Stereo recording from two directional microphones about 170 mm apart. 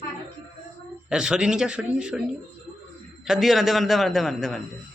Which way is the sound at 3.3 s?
Centre (ahead or behind).